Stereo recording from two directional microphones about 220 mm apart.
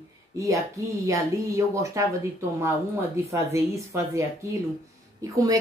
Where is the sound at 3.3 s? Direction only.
15° right (ahead or behind).